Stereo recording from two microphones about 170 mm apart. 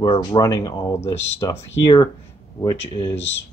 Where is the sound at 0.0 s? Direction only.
25° left (ahead or behind).